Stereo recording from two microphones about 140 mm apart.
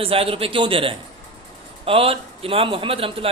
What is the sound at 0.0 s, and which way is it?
A man's voice, 40° right (ahead or behind).